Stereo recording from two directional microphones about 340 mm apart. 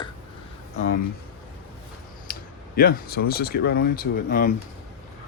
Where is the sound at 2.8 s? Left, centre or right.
Left.